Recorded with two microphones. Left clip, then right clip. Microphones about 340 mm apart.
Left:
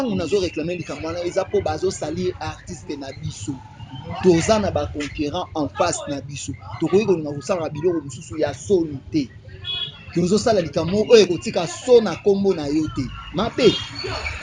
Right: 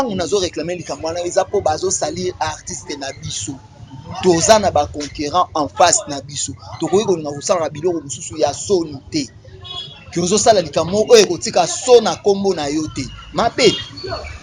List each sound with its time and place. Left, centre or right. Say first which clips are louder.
0.0 s speech: right 4 dB; right